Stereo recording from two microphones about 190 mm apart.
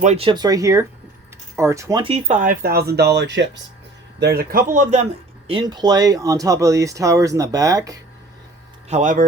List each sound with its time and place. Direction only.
0.0 s speech: 35° right (ahead or behind)
0.3 s speech: 20° right (ahead or behind); by 3.6 s 70° right (ahead or behind)
4.2 s speech: 55° right (ahead or behind)
4.7 s speech: 40° right (ahead or behind)
5.5 s speech: 25° right (ahead or behind)
8.9 s speech: 40° right (ahead or behind)